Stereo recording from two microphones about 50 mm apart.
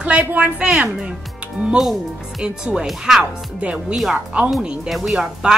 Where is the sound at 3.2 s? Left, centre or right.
Right.